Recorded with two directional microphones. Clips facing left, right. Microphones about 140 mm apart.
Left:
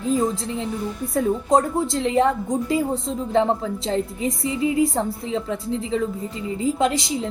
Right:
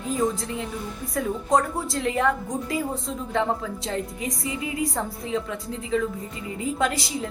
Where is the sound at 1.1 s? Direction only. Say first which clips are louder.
Left 4 dB; 25° left (ahead or behind).